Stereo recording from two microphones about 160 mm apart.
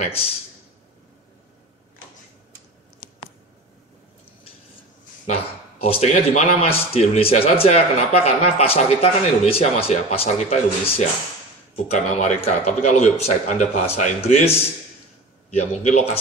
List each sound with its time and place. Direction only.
5.2 s a man's voice: 40° left (ahead or behind)